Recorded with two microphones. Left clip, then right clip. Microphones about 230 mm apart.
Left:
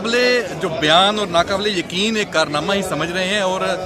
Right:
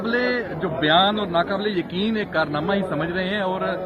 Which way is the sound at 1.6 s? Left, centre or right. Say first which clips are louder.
Left 5 dB; left.